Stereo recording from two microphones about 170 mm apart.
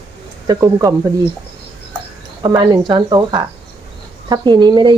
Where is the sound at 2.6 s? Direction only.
25° right (ahead or behind).